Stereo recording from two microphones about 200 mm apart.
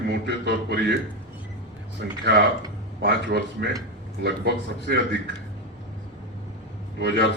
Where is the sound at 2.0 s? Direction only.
55° right (ahead or behind).